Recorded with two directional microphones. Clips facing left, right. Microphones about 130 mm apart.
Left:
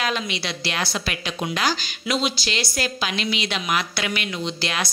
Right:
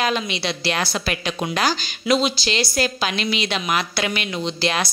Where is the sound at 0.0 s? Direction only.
25° right (ahead or behind).